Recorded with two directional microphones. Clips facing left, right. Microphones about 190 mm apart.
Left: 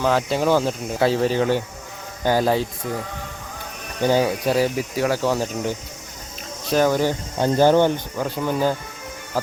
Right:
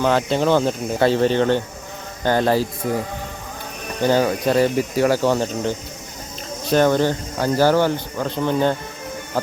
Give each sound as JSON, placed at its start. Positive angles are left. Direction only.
{"t": 0.0, "sound": "speech", "side_deg": 0}
{"t": 4.0, "sound": "speech", "side_deg": 10}
{"t": 7.3, "sound": "speech", "side_deg": 20}
{"t": 8.2, "sound": "speech", "side_deg": 5}